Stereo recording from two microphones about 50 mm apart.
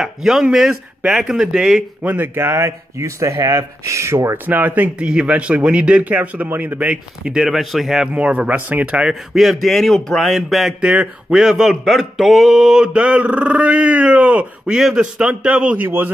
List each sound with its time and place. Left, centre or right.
0.0 s speech: centre
2.0 s speech: right
2.3 s speech: right
4.5 s speech: right
4.9 s speech: right
6.9 s speech: centre
7.5 s speech: centre
8.1 s speech: right
8.8 s speech: centre
9.3 s speech: centre
10.8 s speech: right
11.7 s speech: centre
12.8 s speech: right
14.7 s speech: centre